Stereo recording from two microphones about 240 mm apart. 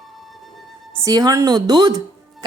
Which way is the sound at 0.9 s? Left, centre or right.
Centre.